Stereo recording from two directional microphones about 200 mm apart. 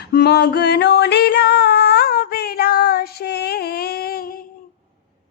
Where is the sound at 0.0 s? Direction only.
55° left (ahead or behind).